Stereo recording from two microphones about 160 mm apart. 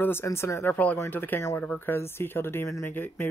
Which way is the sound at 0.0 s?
15° left (ahead or behind).